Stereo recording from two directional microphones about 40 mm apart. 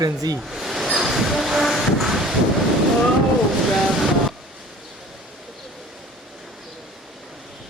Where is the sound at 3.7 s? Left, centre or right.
Centre.